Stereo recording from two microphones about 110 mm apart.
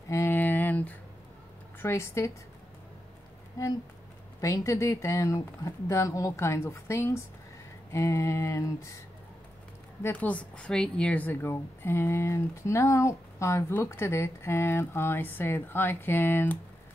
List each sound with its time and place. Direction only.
0.1 s a sound: 20° left (ahead or behind)
1.8 s a woman's voice: 25° left (ahead or behind)
4.4 s a woman's voice: 30° left (ahead or behind)
10.1 s a woman's voice: 10° left (ahead or behind)